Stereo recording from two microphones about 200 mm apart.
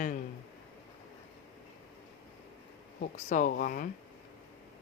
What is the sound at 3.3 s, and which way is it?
Speech, 40° left (ahead or behind).